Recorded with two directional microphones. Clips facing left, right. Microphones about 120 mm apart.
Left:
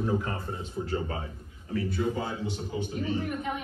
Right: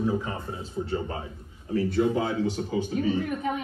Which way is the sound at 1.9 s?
80° right.